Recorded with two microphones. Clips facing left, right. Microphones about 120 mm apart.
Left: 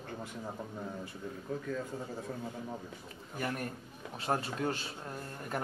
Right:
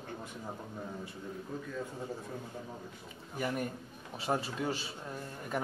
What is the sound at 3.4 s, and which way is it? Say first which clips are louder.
A man's voice: right 2 dB; 5° right (ahead or behind).